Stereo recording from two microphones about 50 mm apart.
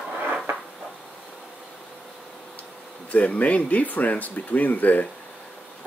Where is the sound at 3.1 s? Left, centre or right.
Left.